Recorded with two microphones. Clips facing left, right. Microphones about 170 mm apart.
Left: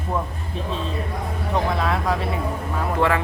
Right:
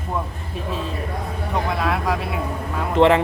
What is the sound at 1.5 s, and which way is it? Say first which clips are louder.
Speech: even; centre (ahead or behind).